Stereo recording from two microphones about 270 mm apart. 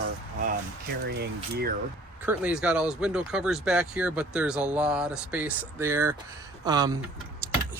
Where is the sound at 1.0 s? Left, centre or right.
Right.